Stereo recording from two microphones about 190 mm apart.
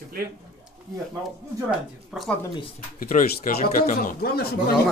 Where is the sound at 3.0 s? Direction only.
45° left (ahead or behind).